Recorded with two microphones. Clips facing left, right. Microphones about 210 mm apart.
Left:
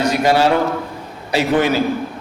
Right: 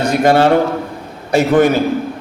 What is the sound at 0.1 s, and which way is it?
A man's voice, 50° right (ahead or behind).